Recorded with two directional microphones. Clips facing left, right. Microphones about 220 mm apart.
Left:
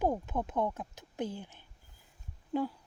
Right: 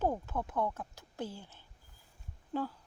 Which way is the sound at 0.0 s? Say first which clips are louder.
Left 2 dB; 15° left (ahead or behind).